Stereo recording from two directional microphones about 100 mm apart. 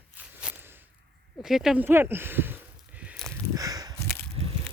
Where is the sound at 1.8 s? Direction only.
20° right (ahead or behind).